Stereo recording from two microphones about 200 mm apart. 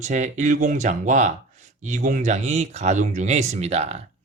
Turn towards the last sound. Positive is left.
turn(degrees=-30)  # may be behind; listen again after turning